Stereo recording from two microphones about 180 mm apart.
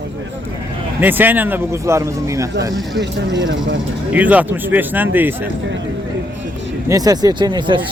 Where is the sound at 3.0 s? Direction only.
80° right.